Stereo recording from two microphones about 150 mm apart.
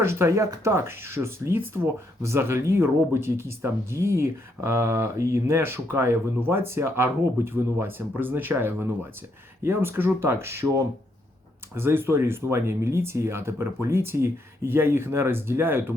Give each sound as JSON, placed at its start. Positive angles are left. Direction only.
{"t": 0.0, "sound": "speech", "side_deg": -15}